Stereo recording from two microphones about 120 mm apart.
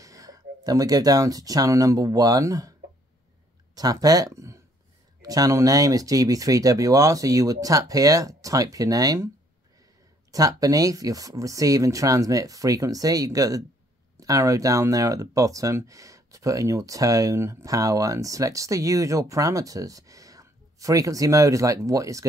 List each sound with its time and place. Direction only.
0.0 s speech: 30° right (ahead or behind)
3.7 s speech: 30° right (ahead or behind)
10.3 s speech: 30° right (ahead or behind)